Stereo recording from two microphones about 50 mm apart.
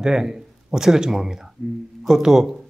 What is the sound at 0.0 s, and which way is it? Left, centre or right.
Speech, centre.